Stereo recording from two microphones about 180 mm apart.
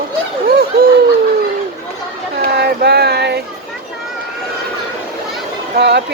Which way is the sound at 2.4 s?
65° right (ahead or behind).